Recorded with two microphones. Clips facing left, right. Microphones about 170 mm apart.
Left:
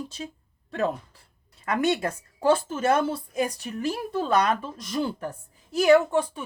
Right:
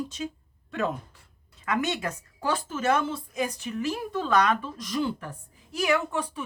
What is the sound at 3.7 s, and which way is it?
Speech, 45° left (ahead or behind).